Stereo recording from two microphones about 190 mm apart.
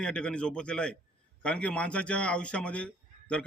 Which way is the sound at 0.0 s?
5° left (ahead or behind).